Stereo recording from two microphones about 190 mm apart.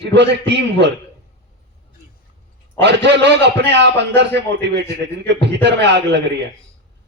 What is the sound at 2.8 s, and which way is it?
A man's voice, 65° right (ahead or behind).